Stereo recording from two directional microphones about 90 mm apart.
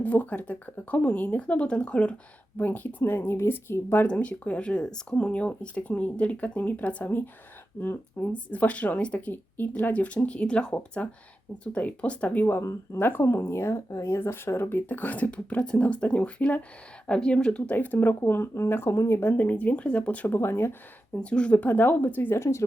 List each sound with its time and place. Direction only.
0.0 s speech: 15° left (ahead or behind)
21.2 s speech: 10° left (ahead or behind); by 22.6 s 30° left (ahead or behind)